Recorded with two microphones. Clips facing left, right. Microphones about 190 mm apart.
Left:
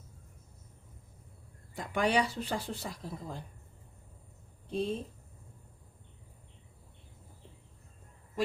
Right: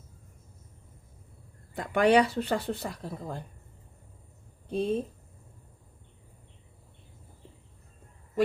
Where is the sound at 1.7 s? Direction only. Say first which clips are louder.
Right 7 dB; 65° right (ahead or behind).